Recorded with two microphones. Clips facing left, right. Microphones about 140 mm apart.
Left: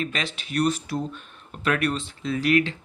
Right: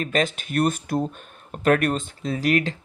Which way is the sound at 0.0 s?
45° right (ahead or behind).